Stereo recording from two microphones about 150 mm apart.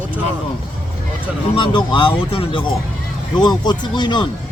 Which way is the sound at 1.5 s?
30° left (ahead or behind).